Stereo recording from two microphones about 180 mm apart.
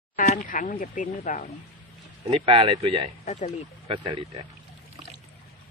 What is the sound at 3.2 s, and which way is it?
Speech, 40° left (ahead or behind).